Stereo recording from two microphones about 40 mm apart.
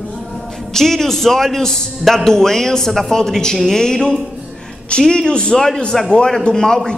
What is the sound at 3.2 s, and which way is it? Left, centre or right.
A man's voice, centre.